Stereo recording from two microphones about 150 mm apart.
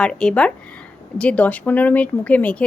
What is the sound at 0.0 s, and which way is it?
A woman's voice, 5° left (ahead or behind).